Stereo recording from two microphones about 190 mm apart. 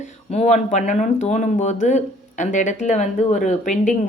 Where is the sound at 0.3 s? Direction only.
35° left (ahead or behind).